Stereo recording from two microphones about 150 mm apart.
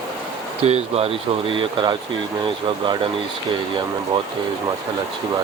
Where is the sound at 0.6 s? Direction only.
45° right (ahead or behind).